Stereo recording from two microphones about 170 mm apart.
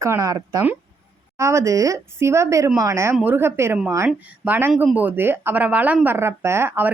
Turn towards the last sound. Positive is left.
turn(degrees=-10)  # may be behind; listen again after turning